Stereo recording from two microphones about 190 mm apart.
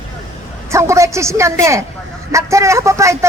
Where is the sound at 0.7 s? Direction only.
15° right (ahead or behind).